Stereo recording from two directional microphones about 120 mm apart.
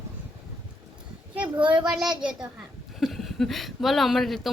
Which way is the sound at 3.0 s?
Centre (ahead or behind).